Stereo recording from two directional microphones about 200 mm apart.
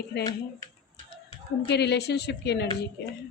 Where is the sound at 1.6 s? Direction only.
55° left (ahead or behind).